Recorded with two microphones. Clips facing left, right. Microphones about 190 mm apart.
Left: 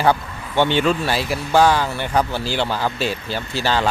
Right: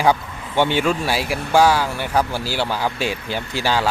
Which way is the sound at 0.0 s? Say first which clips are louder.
Even; 10° right (ahead or behind).